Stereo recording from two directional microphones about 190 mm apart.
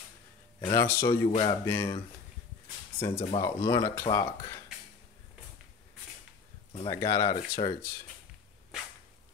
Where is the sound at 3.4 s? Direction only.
20° left (ahead or behind).